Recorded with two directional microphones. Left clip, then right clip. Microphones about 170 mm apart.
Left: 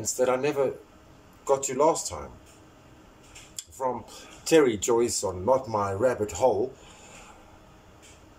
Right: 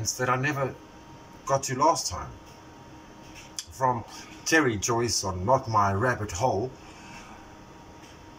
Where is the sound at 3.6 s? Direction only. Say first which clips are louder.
Right 4 dB; 30° left (ahead or behind).